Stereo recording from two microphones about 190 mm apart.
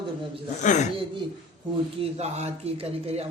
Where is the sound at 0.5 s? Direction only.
40° left (ahead or behind).